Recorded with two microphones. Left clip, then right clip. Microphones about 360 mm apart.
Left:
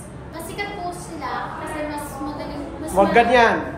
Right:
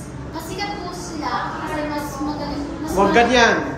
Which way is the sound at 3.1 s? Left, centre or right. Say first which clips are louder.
Right 1 dB; left.